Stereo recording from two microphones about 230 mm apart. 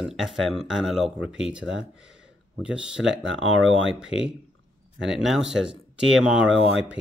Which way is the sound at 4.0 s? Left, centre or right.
Centre.